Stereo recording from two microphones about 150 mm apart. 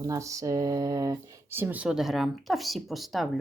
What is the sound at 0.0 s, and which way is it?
Speech, 20° right (ahead or behind).